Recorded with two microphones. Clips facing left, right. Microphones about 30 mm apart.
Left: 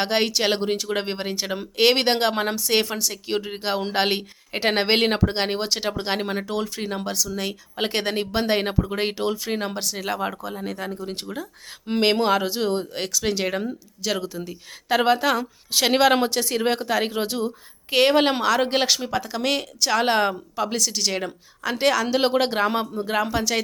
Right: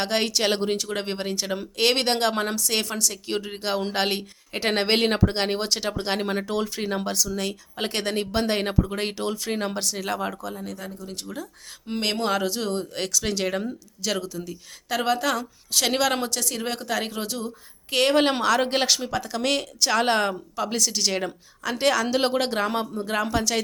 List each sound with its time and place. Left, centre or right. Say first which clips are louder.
0.0 s speech: left 2 dB; centre
10.6 s speech: left 5 dB; left
11.9 s speech: left 5 dB; left
14.3 s speech: left 1 dB; left
17.9 s speech: left 2 dB; centre